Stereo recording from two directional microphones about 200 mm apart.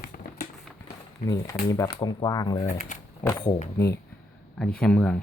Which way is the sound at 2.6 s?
40° left (ahead or behind).